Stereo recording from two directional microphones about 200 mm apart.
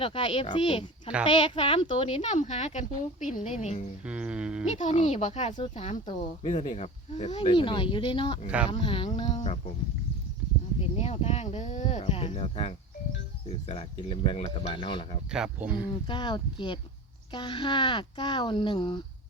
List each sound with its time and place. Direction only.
0.0 s speech: 25° left (ahead or behind)
4.0 s a sound: 5° right (ahead or behind)
4.6 s speech: 35° left (ahead or behind)
8.4 s speech: 5° right (ahead or behind)
8.7 s speech: 25° left (ahead or behind)
10.9 s speech: 30° left (ahead or behind)
15.3 s speech: 5° right (ahead or behind)
16.0 s speech: 25° left (ahead or behind)